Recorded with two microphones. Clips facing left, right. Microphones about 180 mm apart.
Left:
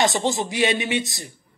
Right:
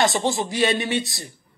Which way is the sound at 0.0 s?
20° left (ahead or behind).